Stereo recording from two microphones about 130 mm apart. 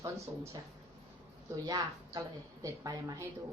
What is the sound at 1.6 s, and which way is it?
A woman's voice, 25° right (ahead or behind).